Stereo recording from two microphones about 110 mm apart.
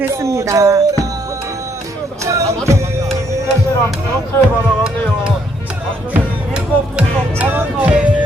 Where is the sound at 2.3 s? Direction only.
30° right (ahead or behind).